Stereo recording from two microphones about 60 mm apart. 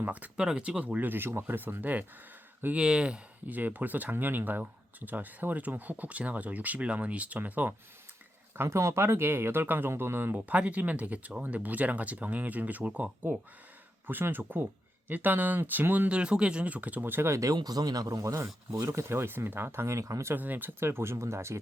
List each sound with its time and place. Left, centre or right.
0.0 s speech: right
0.3 s speech: centre
2.7 s speech: centre
3.4 s speech: right
8.5 s speech: right
10.3 s speech: right
14.1 s speech: right
16.0 s speech: centre; by 17.4 s right
17.4 s speech: right
20.3 s speech: right